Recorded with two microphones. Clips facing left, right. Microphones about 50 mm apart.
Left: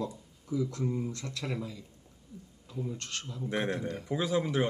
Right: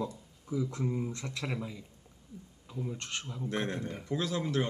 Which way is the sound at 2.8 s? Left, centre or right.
Centre.